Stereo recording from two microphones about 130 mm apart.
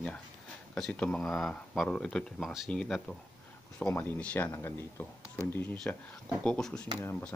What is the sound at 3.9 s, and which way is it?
Speech, 20° left (ahead or behind).